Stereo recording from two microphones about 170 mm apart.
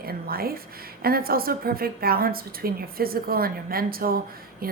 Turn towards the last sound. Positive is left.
turn(degrees=-60)  # may be behind; listen again after turning